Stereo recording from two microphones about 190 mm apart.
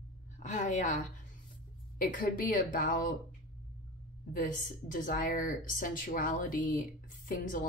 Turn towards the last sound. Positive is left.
turn(degrees=45)  # may be behind; listen again after turning